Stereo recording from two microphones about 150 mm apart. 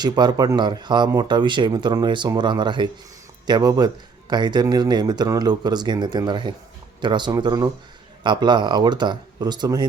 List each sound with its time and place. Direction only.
0.0 s a man's voice: 30° right (ahead or behind)